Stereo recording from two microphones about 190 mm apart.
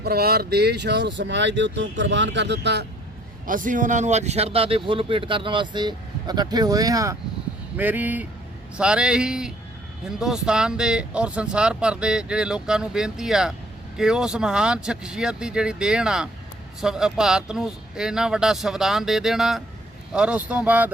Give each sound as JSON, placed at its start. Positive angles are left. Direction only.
{"t": 0.0, "sound": "speech", "side_deg": -55}
{"t": 3.4, "sound": "speech", "side_deg": -45}